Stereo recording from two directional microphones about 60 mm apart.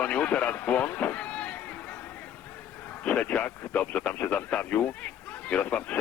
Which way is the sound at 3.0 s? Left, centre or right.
Left.